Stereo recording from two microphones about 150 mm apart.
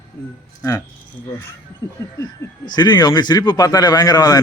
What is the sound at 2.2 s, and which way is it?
Speech, 30° left (ahead or behind).